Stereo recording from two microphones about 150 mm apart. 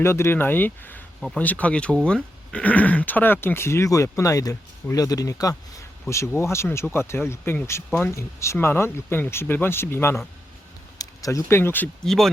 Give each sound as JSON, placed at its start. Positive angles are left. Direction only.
{"t": 0.0, "sound": "speech", "side_deg": 15}
{"t": 12.0, "sound": "speech", "side_deg": 0}